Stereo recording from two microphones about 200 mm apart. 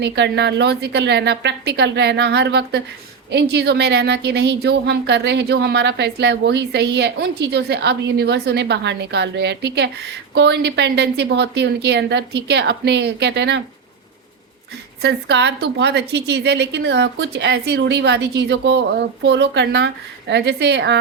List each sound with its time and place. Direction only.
0.0 s a woman's voice: 60° right (ahead or behind)
15.0 s a woman's voice: 60° right (ahead or behind)